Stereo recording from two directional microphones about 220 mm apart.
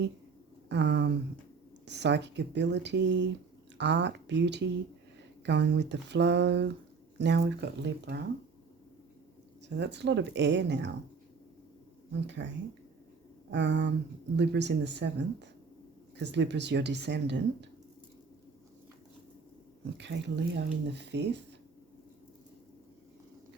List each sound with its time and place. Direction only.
0.7 s speech: 50° right (ahead or behind)
9.6 s speech: 55° right (ahead or behind)
12.2 s speech: 50° right (ahead or behind)
13.5 s speech: 55° right (ahead or behind)
20.0 s speech: 50° right (ahead or behind)